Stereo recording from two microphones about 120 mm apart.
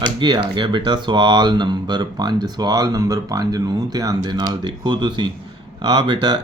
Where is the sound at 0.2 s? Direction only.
40° right (ahead or behind).